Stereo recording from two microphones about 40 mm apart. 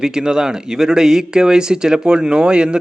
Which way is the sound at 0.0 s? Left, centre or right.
Centre.